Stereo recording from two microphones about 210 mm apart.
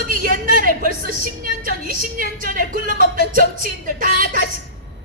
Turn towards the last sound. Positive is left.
turn(degrees=-40)  # may be behind; listen again after turning